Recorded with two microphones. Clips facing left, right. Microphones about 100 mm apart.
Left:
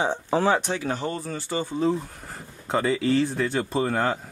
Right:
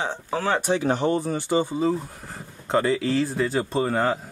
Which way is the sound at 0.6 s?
15° right (ahead or behind).